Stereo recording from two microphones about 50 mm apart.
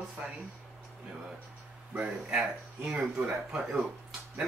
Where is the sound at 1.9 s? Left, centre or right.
Right.